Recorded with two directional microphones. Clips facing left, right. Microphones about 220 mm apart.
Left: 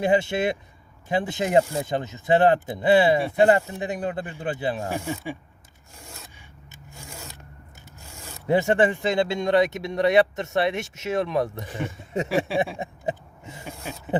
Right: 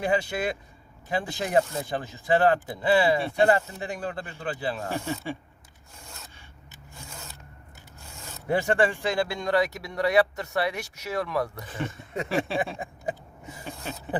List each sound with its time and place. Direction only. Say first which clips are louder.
0.0 s speech: left 5 dB; 25° left (ahead or behind)
8.4 s speech: left 4 dB; 20° left (ahead or behind)
12.5 s a sound: left 4 dB; 10° left (ahead or behind)
12.8 s vehicle: left 3 dB; 25° left (ahead or behind)